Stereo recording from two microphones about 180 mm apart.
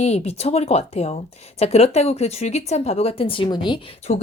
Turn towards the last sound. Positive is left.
turn(degrees=35)  # may be behind; listen again after turning